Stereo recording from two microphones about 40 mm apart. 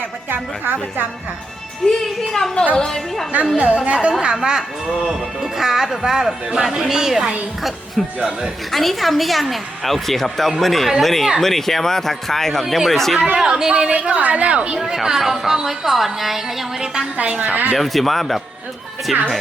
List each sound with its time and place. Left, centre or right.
0.3 s a woman's voice: right
1.9 s speech: centre
2.7 s a woman's voice: left
3.3 s a woman's voice: right
4.4 s speech: centre
8.7 s speech: centre
13.3 s speech: centre
14.1 s a woman's voice: right
14.9 s speech: centre
17.3 s a woman's voice: right
17.7 s speech: centre